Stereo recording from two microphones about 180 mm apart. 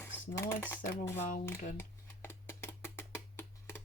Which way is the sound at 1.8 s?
15° left (ahead or behind).